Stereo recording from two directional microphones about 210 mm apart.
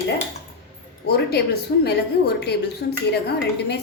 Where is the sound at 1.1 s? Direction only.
50° left (ahead or behind).